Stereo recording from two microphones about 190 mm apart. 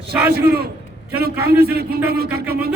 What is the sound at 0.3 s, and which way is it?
A man's voice, 55° right (ahead or behind).